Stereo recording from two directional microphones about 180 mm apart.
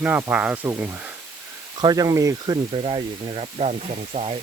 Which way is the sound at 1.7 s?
25° right (ahead or behind).